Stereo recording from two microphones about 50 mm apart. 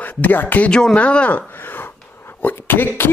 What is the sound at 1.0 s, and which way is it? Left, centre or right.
Speech, left.